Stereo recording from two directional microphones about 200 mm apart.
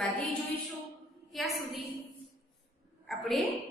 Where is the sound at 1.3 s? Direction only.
Centre (ahead or behind).